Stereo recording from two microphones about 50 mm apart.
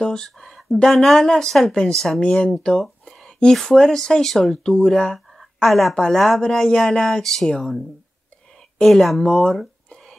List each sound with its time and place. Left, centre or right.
0.0 s speech: centre
0.5 s a sound: centre
0.8 s speech: centre
2.4 s a sound: centre
3.5 s speech: centre
5.4 s a sound: centre
6.1 s speech: centre
6.4 s speech: centre
8.8 s speech: centre
9.2 s speech: centre